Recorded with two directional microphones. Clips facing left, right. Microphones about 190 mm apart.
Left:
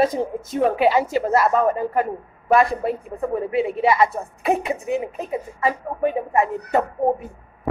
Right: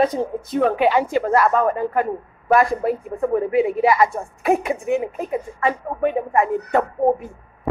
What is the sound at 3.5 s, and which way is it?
Speech, 25° left (ahead or behind).